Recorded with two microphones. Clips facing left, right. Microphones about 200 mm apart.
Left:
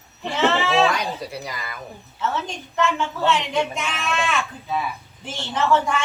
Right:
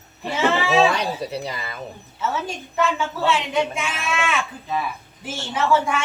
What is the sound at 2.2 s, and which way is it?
A woman's voice, 5° right (ahead or behind).